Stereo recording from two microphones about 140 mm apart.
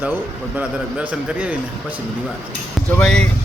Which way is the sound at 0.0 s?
10° right (ahead or behind).